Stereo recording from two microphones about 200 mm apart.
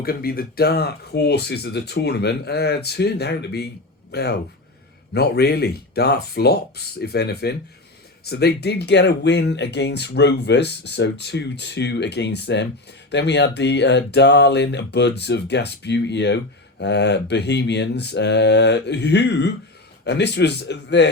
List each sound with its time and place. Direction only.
0.0 s speech: 50° left (ahead or behind)